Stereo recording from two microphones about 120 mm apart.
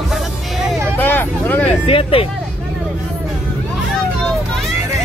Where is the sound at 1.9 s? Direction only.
50° left (ahead or behind).